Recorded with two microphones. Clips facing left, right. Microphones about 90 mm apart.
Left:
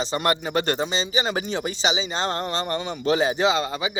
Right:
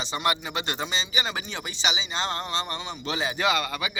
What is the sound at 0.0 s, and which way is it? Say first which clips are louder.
Speech: left 4 dB; 40° left (ahead or behind).